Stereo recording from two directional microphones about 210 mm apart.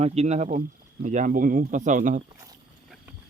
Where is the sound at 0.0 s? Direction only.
30° right (ahead or behind).